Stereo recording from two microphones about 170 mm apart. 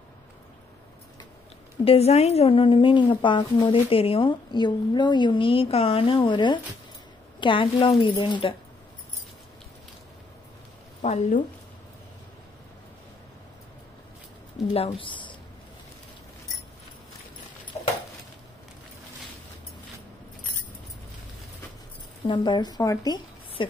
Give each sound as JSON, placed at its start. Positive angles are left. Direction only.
{"t": 1.9, "sound": "a woman's voice", "side_deg": 40}
{"t": 11.0, "sound": "speech", "side_deg": 45}
{"t": 14.7, "sound": "speech", "side_deg": 35}
{"t": 22.2, "sound": "a woman's voice", "side_deg": 25}